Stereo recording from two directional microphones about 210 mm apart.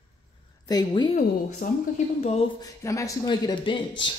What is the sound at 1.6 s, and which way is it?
Speech, 40° left (ahead or behind).